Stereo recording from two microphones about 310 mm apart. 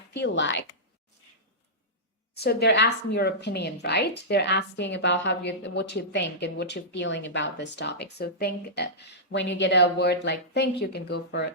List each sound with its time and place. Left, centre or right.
0.1 s a woman's voice: left
2.3 s a woman's voice: left